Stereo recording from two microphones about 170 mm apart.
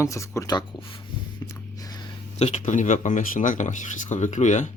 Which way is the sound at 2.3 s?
40° left (ahead or behind).